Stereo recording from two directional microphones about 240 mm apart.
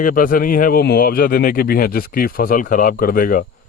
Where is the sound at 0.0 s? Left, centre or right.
Left.